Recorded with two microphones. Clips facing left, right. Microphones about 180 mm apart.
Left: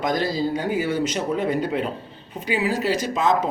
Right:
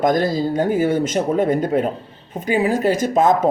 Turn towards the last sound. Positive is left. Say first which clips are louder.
# right 5 dB
turn(degrees=-50)  # may be behind; listen again after turning